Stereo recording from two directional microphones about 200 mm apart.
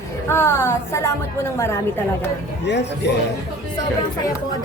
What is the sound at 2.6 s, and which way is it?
Speech, 60° left (ahead or behind).